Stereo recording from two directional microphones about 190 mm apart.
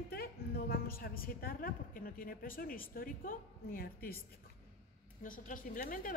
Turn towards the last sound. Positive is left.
turn(degrees=45)  # may be behind; listen again after turning